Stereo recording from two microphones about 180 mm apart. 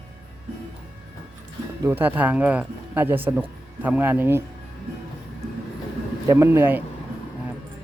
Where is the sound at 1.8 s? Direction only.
10° right (ahead or behind).